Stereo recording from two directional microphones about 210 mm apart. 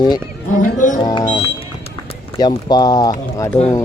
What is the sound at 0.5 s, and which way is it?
Speech, 35° left (ahead or behind).